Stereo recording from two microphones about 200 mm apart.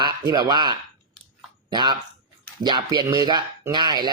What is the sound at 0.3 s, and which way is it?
Speech, 20° right (ahead or behind).